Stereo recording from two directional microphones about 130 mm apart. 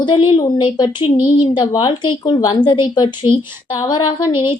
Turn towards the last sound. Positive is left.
turn(degrees=35)  # may be behind; listen again after turning